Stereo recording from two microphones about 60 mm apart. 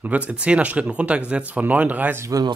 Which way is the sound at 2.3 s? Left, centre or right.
Right.